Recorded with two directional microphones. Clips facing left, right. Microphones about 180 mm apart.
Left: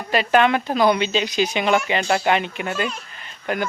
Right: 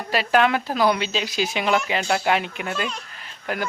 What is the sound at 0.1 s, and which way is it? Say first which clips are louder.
Speech: left 2 dB; centre (ahead or behind).